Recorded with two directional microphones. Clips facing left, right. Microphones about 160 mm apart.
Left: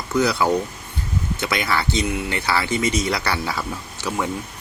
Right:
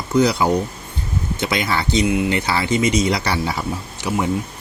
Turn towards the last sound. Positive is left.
turn(degrees=-15)  # may be behind; listen again after turning